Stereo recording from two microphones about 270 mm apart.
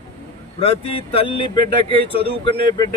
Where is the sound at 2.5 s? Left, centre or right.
Centre.